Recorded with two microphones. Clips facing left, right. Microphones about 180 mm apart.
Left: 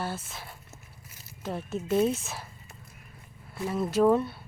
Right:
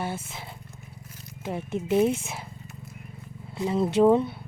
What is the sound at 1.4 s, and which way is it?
Speech, 15° right (ahead or behind).